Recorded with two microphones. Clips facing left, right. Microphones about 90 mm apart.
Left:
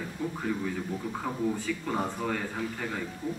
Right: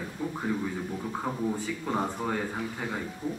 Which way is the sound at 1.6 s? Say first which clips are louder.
Right 1 dB; 15° right (ahead or behind).